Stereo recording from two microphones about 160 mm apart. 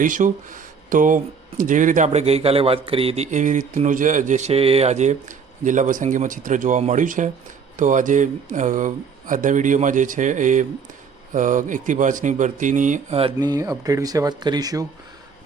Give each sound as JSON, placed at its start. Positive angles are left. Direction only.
{"t": 0.0, "sound": "speech", "side_deg": -55}
{"t": 3.3, "sound": "speech", "side_deg": -50}
{"t": 13.4, "sound": "speech", "side_deg": -20}